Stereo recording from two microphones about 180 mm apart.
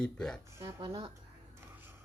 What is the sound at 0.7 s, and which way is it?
Speech, 30° right (ahead or behind).